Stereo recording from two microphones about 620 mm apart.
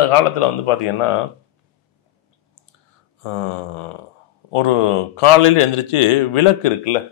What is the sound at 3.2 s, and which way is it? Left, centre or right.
A man's voice, left.